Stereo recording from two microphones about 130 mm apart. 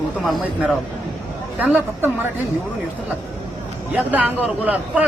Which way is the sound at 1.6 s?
15° right (ahead or behind).